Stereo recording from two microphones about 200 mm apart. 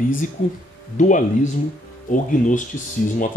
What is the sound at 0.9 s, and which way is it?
Speech, 40° left (ahead or behind).